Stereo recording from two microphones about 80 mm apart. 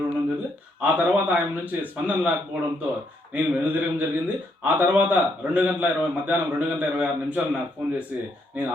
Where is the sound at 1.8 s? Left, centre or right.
Centre.